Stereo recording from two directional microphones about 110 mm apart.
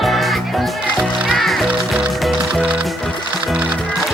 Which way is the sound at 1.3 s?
Centre (ahead or behind).